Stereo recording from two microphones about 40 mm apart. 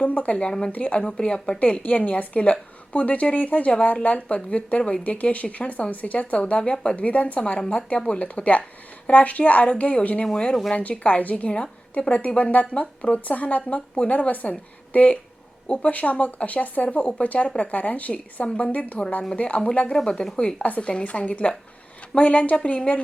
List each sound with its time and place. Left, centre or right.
0.0 s speech: left
1.5 s speech: left
3.7 s speech: left
10.3 s speech: left
10.8 s speech: left
11.4 s speech: left
20.6 s speech: left